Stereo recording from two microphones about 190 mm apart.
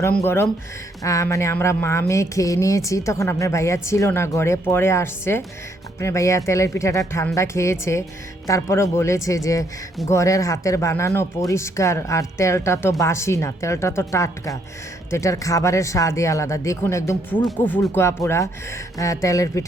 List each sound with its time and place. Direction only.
1.0 s speech: 15° left (ahead or behind)